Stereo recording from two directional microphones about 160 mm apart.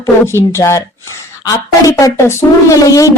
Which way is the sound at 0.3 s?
15° left (ahead or behind).